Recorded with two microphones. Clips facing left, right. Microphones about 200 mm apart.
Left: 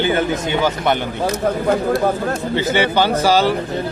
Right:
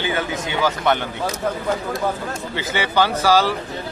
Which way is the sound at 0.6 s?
15° left (ahead or behind).